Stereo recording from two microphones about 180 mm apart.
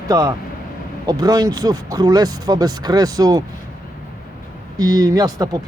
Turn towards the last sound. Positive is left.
turn(degrees=-20)  # may be behind; listen again after turning